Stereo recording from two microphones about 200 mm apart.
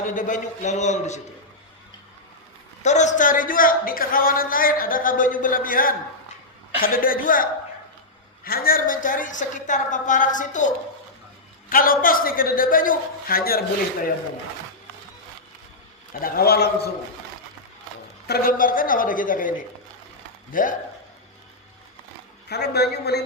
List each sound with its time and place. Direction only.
0.1 s a woman's voice: 40° left (ahead or behind)
2.8 s speech: 35° left (ahead or behind)
8.4 s a woman's voice: 50° left (ahead or behind)
11.7 s speech: 45° left (ahead or behind)
16.2 s speech: 50° left (ahead or behind)
18.3 s speech: 45° left (ahead or behind)
22.4 s speech: 55° left (ahead or behind)